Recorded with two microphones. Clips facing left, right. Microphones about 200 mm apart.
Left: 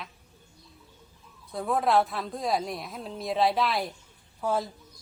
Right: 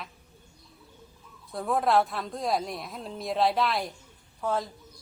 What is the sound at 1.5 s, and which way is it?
A woman's voice, centre (ahead or behind).